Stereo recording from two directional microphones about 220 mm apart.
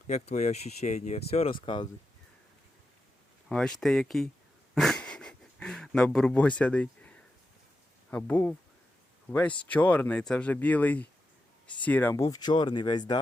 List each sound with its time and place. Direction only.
0.1 s speech: 30° left (ahead or behind)
3.5 s speech: centre (ahead or behind)
4.7 s a sound: centre (ahead or behind)
8.1 s speech: 5° left (ahead or behind)